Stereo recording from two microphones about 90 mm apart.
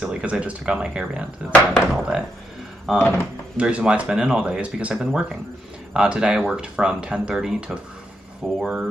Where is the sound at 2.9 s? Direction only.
25° left (ahead or behind).